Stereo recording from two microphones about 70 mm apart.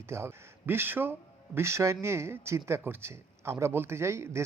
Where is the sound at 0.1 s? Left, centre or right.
Right.